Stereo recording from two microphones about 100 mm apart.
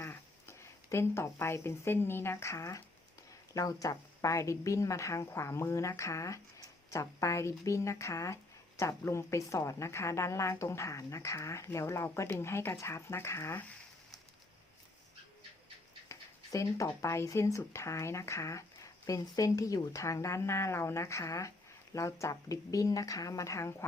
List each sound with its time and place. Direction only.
0.0 s a woman's voice: 25° left (ahead or behind)
16.0 s speech: 30° left (ahead or behind)